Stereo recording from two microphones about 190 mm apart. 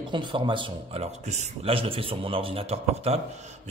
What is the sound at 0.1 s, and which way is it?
A man's voice, 25° right (ahead or behind).